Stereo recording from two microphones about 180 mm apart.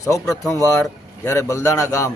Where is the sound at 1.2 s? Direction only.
15° left (ahead or behind).